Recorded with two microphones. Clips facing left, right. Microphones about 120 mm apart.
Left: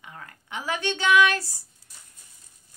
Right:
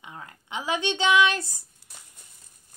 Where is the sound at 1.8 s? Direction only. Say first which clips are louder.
Right 5 dB; 65° right (ahead or behind).